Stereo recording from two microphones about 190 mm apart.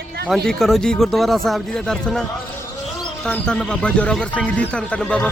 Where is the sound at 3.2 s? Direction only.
5° left (ahead or behind).